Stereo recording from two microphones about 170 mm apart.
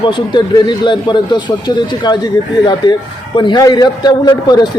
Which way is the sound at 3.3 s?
25° left (ahead or behind).